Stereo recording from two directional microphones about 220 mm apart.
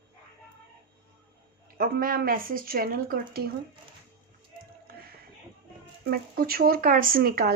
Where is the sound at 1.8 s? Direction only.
40° right (ahead or behind).